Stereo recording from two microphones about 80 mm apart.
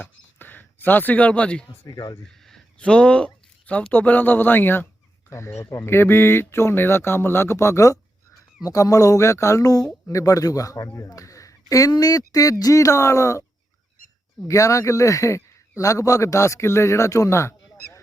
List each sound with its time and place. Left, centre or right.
0.0 s speech: left
1.9 s speech: left
2.2 s speech: centre
5.3 s a man's voice: left
14.4 s a man's voice: left